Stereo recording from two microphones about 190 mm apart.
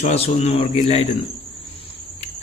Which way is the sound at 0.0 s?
35° left (ahead or behind).